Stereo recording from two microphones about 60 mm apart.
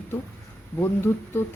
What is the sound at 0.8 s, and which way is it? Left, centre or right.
Speech, left.